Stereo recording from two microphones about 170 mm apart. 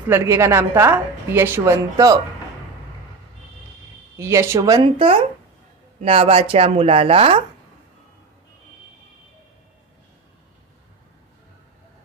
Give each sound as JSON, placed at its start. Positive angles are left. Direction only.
{"t": 0.1, "sound": "a woman's voice", "side_deg": -15}
{"t": 4.2, "sound": "speech", "side_deg": -15}